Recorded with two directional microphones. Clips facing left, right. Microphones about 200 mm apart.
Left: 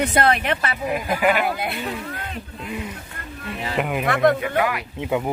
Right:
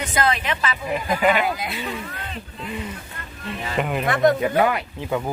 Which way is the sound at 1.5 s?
55° left (ahead or behind).